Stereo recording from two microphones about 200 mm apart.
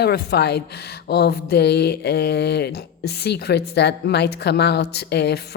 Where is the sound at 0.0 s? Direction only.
55° left (ahead or behind).